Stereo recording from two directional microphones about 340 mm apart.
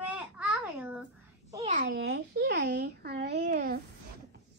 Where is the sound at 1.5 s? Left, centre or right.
Centre.